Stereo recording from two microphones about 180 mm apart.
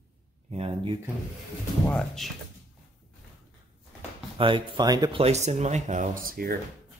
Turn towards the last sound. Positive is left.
turn(degrees=-55)  # may be behind; listen again after turning